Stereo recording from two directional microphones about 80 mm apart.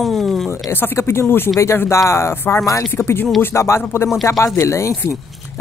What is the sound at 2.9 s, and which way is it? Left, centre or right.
Speech, left.